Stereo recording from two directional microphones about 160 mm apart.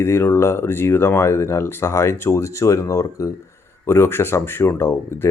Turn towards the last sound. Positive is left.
turn(degrees=15)  # may be behind; listen again after turning